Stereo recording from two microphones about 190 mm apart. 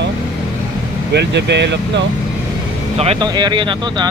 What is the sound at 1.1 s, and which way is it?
Speech, 65° right (ahead or behind).